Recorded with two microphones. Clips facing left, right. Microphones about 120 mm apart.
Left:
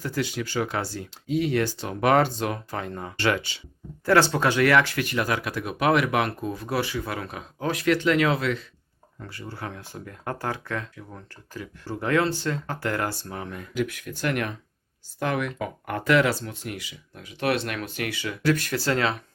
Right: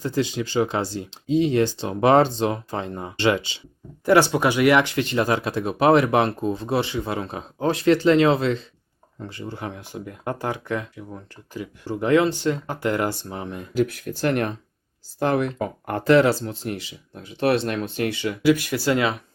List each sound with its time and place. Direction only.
0.0 s speech: 20° right (ahead or behind)
13.7 s speech: 35° right (ahead or behind)
18.4 s speech: 10° right (ahead or behind)